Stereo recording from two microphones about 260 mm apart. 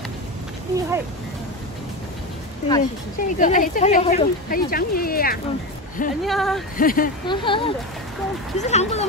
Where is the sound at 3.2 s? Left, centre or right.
Left.